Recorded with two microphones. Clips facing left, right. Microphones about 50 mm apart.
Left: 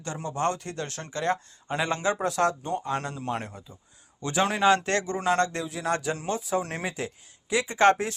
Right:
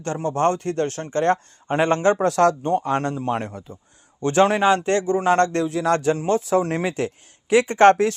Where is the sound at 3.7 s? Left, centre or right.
Right.